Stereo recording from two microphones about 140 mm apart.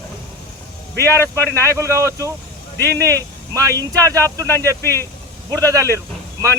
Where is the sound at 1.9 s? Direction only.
20° right (ahead or behind).